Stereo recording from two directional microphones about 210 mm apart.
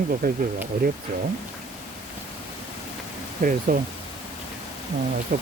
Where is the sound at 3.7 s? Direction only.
45° right (ahead or behind).